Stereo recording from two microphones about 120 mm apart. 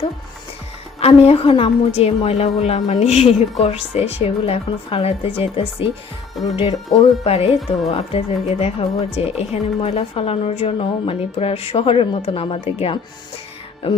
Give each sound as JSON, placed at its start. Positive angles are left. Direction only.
{"t": 0.9, "sound": "speech", "side_deg": 55}